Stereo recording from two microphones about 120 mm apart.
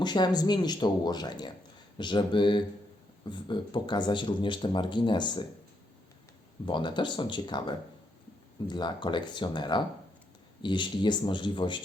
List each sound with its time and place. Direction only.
0.0 s speech: 35° left (ahead or behind)
6.7 s speech: 40° left (ahead or behind)